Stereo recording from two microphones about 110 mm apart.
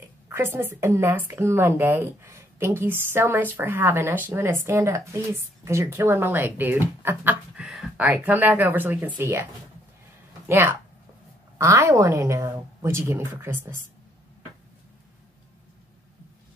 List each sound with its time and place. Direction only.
0.3 s a woman's voice: 20° right (ahead or behind)
10.5 s a woman's voice: 20° right (ahead or behind)